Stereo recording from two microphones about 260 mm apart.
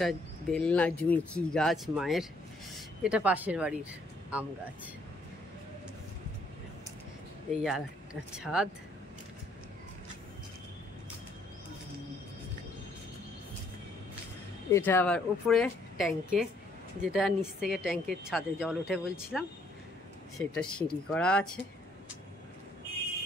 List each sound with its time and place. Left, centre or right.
0.0 s speech: centre
7.6 s speech: centre
14.7 s speech: centre